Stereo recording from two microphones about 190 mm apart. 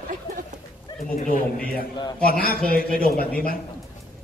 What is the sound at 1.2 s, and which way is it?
Speech, 45° left (ahead or behind).